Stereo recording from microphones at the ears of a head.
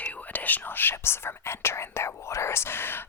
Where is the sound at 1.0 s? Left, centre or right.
Left.